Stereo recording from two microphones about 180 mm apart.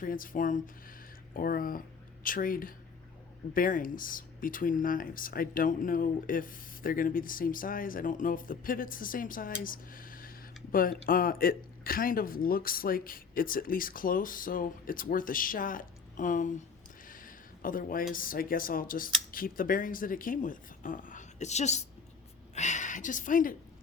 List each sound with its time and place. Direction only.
0.0 s speech: 50° left (ahead or behind)
17.1 s a sound: 50° left (ahead or behind)
18.1 s speech: 50° left (ahead or behind)